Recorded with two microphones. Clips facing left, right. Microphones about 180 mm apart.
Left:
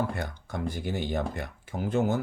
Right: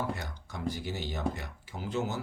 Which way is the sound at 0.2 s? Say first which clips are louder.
Left 6 dB; 55° left (ahead or behind).